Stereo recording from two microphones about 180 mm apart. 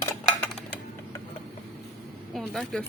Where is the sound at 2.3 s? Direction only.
Centre (ahead or behind).